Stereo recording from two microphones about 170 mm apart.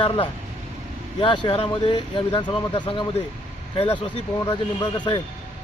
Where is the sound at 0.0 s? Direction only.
35° left (ahead or behind).